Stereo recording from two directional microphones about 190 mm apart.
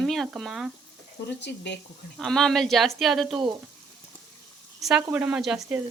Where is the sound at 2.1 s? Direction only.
Centre (ahead or behind).